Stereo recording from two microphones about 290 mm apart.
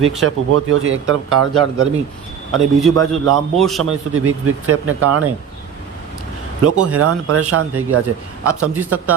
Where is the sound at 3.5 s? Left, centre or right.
Centre.